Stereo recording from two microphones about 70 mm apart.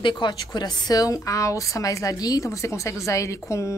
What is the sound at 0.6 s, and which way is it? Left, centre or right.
Speech, left.